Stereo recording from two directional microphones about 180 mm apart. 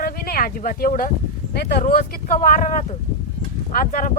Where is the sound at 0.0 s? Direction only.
55° left (ahead or behind).